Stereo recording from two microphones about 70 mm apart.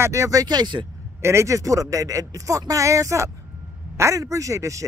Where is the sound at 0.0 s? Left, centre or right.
Right.